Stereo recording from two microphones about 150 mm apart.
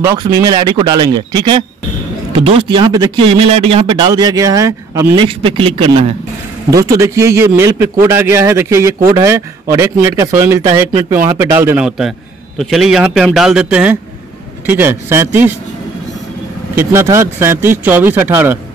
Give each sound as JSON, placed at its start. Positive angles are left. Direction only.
{"t": 0.2, "sound": "speech", "side_deg": -30}
{"t": 3.3, "sound": "a man's voice", "side_deg": -40}
{"t": 5.1, "sound": "speech", "side_deg": -35}
{"t": 6.7, "sound": "a man's voice", "side_deg": -20}
{"t": 12.5, "sound": "a man's voice", "side_deg": 0}
{"t": 16.7, "sound": "speech", "side_deg": -15}